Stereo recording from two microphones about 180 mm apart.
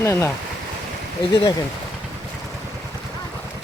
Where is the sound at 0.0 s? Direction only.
15° left (ahead or behind).